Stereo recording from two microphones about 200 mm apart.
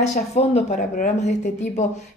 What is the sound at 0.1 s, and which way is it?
Speech, 35° left (ahead or behind).